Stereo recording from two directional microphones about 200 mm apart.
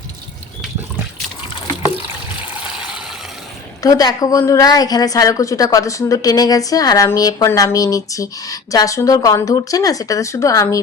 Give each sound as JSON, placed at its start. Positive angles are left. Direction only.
{"t": 3.8, "sound": "a woman's voice", "side_deg": 20}